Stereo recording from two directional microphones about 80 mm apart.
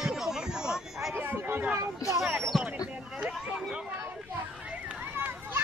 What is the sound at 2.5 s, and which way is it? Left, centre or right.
Speech, centre.